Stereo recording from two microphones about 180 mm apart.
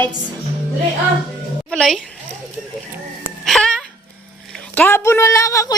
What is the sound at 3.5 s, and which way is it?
Music, centre (ahead or behind).